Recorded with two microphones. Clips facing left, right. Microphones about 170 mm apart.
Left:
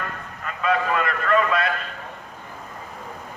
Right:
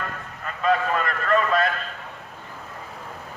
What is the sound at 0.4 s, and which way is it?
Vehicle, 40° right (ahead or behind).